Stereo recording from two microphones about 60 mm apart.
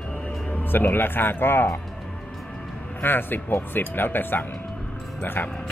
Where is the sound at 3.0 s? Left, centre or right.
Left.